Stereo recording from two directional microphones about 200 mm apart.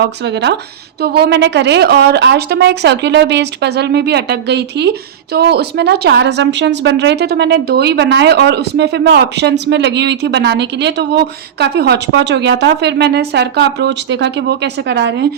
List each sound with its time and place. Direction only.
0.0 s a woman's voice: 60° right (ahead or behind)